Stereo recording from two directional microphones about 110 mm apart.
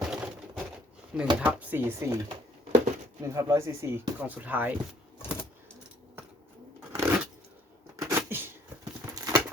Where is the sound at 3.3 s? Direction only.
30° right (ahead or behind).